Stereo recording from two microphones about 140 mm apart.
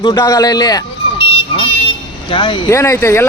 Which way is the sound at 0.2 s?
25° left (ahead or behind).